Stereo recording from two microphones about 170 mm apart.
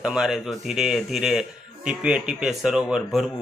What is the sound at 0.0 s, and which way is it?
Speech, 5° right (ahead or behind).